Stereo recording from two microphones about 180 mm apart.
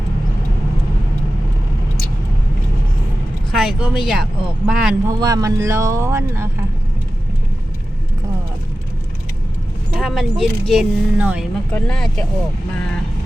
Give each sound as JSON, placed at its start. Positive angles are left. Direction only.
{"t": 3.5, "sound": "speech", "side_deg": -5}
{"t": 5.0, "sound": "speech", "side_deg": -20}
{"t": 10.0, "sound": "speech", "side_deg": 0}